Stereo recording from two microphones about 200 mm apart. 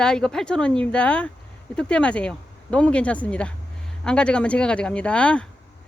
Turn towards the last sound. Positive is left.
turn(degrees=5)  # may be behind; listen again after turning